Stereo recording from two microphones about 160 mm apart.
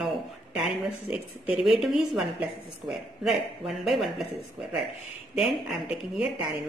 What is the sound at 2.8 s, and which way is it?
Speech, 30° right (ahead or behind).